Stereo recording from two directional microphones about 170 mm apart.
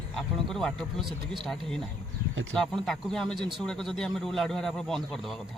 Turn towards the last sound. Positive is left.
turn(degrees=0)  # may be behind; listen again after turning